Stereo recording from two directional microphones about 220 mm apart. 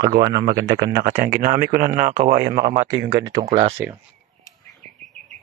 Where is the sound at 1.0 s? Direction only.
35° right (ahead or behind).